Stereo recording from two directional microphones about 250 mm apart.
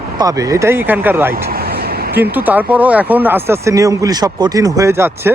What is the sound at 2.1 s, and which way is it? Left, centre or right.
Speech, centre.